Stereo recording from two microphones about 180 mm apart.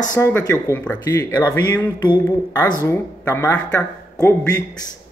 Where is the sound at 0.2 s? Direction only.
10° left (ahead or behind).